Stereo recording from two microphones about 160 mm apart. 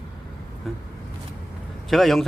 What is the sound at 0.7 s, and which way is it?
Speech, centre (ahead or behind).